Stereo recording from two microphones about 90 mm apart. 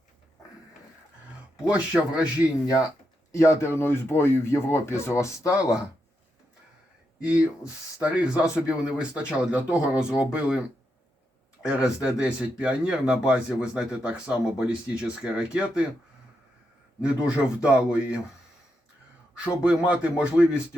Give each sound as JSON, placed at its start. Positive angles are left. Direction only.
{"t": 1.6, "sound": "speech", "side_deg": -10}
{"t": 3.3, "sound": "speech", "side_deg": 35}
{"t": 8.0, "sound": "speech", "side_deg": -15}
{"t": 11.6, "sound": "speech", "side_deg": -10}
{"t": 17.0, "sound": "speech", "side_deg": -10}
{"t": 19.3, "sound": "speech", "side_deg": -10}